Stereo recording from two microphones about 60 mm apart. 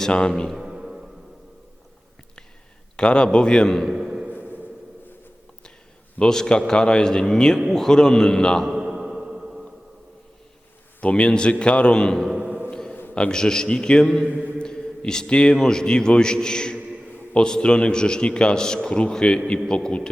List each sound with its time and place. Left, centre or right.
0.0 s a man's voice: centre
0.5 s music: centre
2.9 s a man's voice: centre
3.9 s a sound: centre
4.3 s a sound: right
6.1 s a man's voice: centre
8.7 s music: centre
11.0 s a man's voice: centre
12.4 s a sound: right
12.7 s a sound: centre
13.1 s a man's voice: centre
14.3 s a man's voice: right
14.6 s a man's voice: centre